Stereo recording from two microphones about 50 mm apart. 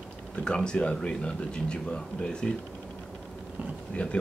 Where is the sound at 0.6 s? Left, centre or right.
Centre.